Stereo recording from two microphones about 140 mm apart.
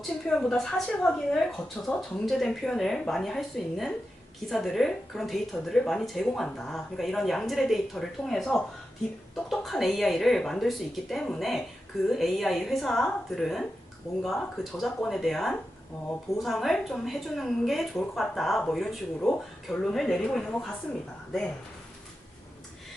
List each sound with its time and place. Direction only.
0.0 s a woman's voice: centre (ahead or behind)